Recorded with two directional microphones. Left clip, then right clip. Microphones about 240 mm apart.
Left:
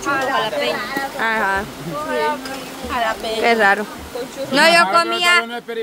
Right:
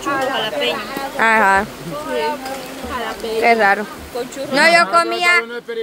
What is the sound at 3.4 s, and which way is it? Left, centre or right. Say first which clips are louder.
Speech: right 2 dB; centre.